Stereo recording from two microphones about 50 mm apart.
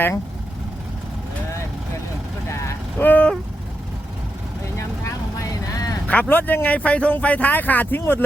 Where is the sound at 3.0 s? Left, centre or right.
Left.